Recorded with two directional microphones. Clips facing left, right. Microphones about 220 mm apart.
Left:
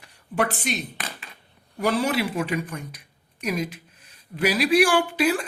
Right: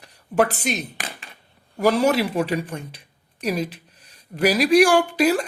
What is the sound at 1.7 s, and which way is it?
Speech, 40° right (ahead or behind).